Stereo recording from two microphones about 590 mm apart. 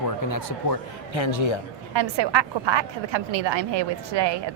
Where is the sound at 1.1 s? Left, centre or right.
Left.